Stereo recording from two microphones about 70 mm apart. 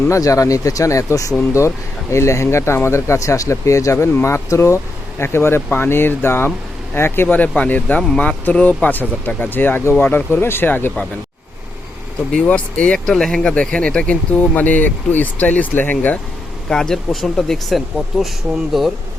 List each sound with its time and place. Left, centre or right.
0.1 s speech: left
12.5 s speech: centre
16.6 s speech: centre